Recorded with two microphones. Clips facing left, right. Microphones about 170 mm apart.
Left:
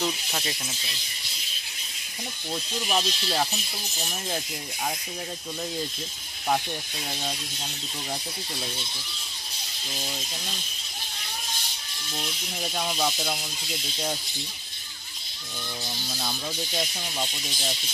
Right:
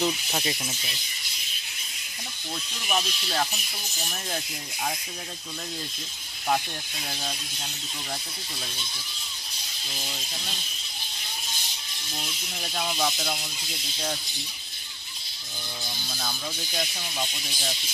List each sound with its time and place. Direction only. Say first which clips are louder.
0.0 s speech: right 2 dB; 10° right (ahead or behind)
2.9 s speech: left 1 dB; 30° left (ahead or behind)
12.7 s speech: even; 5° left (ahead or behind)
16.2 s speech: left 2 dB; 20° left (ahead or behind)